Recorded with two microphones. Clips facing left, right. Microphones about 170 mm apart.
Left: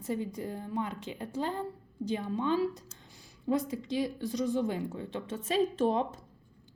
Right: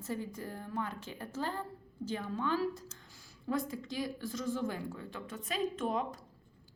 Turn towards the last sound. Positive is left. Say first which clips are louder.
# left 6 dB
turn(degrees=30)  # may be behind; listen again after turning